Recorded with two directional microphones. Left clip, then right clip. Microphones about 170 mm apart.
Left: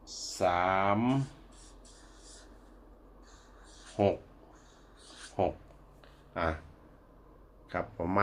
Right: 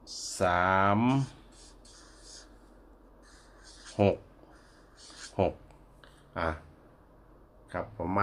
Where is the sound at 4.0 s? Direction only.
50° right (ahead or behind).